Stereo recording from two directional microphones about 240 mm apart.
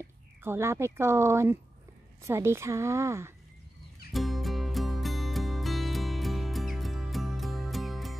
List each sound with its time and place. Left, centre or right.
0.4 s speech: centre
4.1 s music: centre